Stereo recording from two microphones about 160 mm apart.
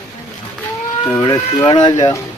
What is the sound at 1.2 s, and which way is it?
Speech, 25° left (ahead or behind).